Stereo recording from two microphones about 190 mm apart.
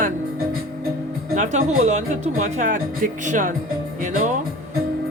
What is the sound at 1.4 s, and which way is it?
A woman's voice, 40° right (ahead or behind).